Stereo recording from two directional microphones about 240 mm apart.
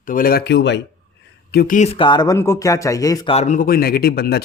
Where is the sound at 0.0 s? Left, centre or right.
Left.